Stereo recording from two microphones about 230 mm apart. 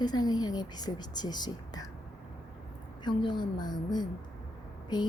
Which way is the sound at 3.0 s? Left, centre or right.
Centre.